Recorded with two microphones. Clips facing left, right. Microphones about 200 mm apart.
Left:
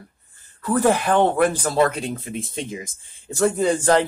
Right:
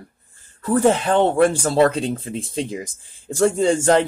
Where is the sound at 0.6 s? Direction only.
25° right (ahead or behind).